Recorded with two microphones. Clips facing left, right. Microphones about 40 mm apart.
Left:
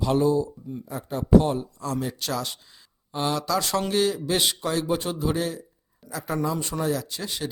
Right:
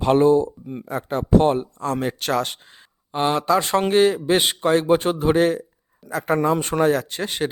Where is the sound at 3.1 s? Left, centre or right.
Right.